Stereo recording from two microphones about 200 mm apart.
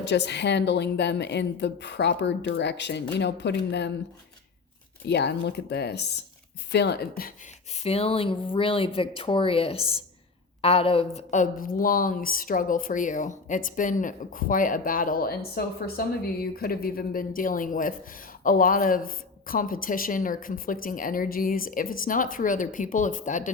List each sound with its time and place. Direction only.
0.0 s a woman's voice: 60° left (ahead or behind)
5.0 s a woman's voice: 55° left (ahead or behind)
7.7 s speech: 30° left (ahead or behind)